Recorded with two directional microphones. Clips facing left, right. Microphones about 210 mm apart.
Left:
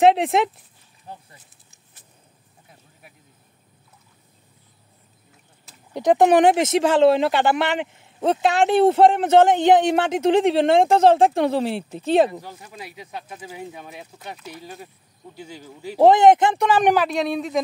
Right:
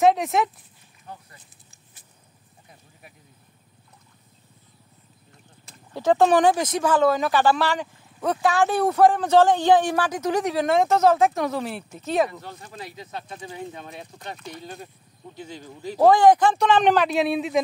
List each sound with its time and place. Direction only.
0.0 s speech: 30° left (ahead or behind)
5.9 s speech: 15° left (ahead or behind)
12.3 s speech: 10° left (ahead or behind)
16.0 s speech: 25° left (ahead or behind)
16.6 s speech: 10° left (ahead or behind)
17.1 s speech: 5° right (ahead or behind)